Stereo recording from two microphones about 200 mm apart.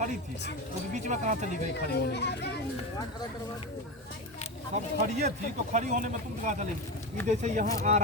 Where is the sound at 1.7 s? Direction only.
55° left (ahead or behind).